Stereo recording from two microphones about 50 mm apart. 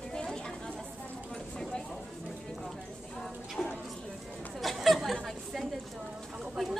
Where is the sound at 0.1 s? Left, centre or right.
Centre.